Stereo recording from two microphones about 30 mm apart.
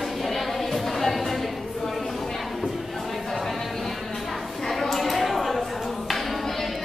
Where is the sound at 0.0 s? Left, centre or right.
Centre.